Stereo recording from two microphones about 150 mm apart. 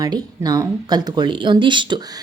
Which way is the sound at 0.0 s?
25° right (ahead or behind).